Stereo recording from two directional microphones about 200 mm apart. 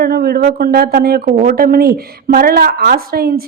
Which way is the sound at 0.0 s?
50° right (ahead or behind).